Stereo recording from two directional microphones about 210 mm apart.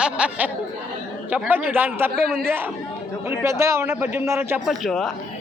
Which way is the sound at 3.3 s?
15° right (ahead or behind).